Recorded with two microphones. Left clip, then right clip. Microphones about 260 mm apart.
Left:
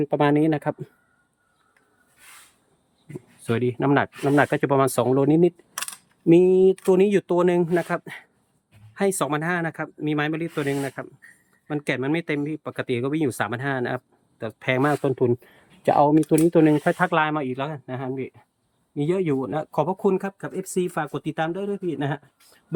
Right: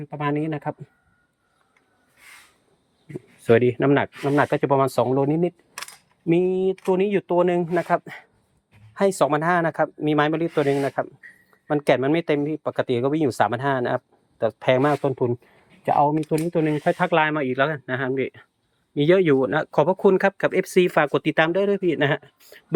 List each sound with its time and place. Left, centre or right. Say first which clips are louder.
0.0 s speech: left 6 dB; left
3.1 s speech: right 10 dB; centre
4.2 s speech: even; centre